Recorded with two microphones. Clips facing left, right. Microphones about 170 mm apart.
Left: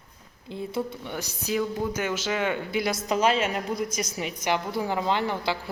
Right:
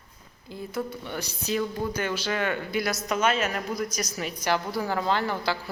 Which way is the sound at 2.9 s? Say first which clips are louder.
Left 3 dB; 30° left (ahead or behind).